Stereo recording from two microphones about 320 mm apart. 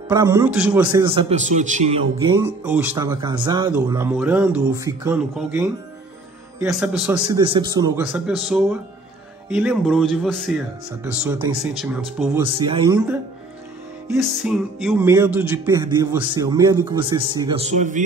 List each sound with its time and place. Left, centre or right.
0.1 s speech: centre
1.0 s speech: centre
2.6 s speech: centre
12.5 s speech: centre
14.0 s speech: centre; by 18.0 s right